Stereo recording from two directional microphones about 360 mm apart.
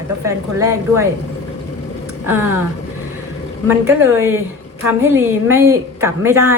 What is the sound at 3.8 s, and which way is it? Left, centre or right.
A woman's voice, centre.